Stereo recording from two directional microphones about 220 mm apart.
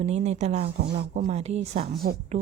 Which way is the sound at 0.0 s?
30° right (ahead or behind).